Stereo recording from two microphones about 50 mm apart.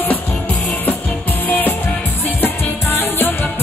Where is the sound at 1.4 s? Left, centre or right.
Left.